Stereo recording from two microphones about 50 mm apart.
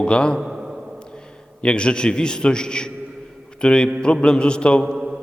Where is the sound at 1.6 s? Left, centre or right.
Centre.